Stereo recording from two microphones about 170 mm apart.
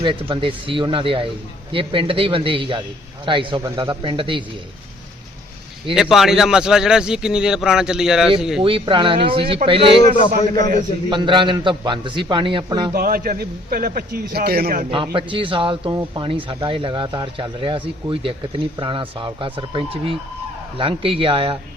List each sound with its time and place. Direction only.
0.0 s speech: 30° right (ahead or behind)
5.9 s speech: centre (ahead or behind)
8.6 s speech: 30° right (ahead or behind)
10.2 s a man's voice: 20° left (ahead or behind)
11.1 s speech: 30° right (ahead or behind)
12.9 s a man's voice: 60° right (ahead or behind)
15.1 s speech: 30° right (ahead or behind)